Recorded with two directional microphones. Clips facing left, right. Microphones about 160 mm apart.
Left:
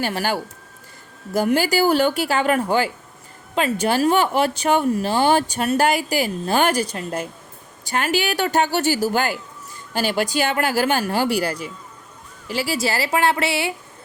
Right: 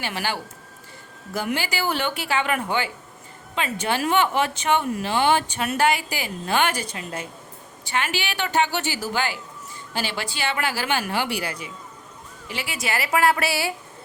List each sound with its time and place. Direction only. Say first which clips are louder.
0.0 s a woman's voice: left 5 dB; 40° left (ahead or behind); by 13.7 s 20° left (ahead or behind)